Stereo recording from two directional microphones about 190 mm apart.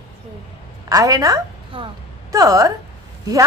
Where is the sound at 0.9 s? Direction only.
20° right (ahead or behind).